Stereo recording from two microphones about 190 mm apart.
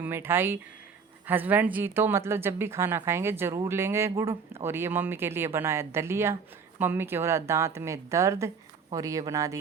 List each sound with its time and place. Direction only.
0.0 s speech: 10° right (ahead or behind)